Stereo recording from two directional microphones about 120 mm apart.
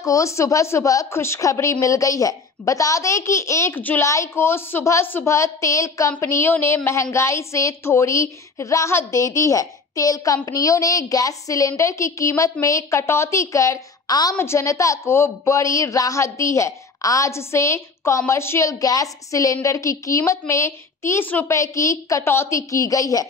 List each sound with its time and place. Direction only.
0.0 s a woman's voice: 25° left (ahead or behind)